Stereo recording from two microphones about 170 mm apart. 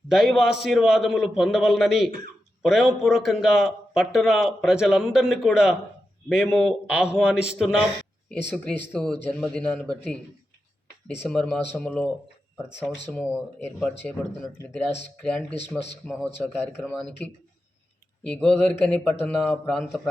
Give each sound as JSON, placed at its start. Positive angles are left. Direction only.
{"t": 0.1, "sound": "a man's voice", "side_deg": 0}
{"t": 8.3, "sound": "a man's voice", "side_deg": 10}
{"t": 15.2, "sound": "a man's voice", "side_deg": 5}
{"t": 18.3, "sound": "a man's voice", "side_deg": 5}